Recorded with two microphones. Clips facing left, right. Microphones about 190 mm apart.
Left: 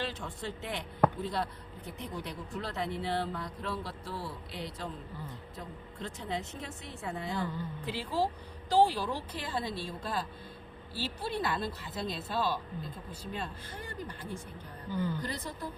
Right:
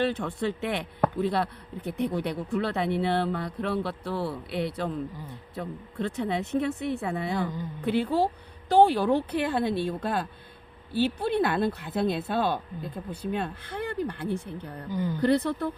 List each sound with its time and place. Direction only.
0.0 s speech: 60° right (ahead or behind)
14.8 s a woman's voice: 15° right (ahead or behind)
15.2 s speech: 65° right (ahead or behind)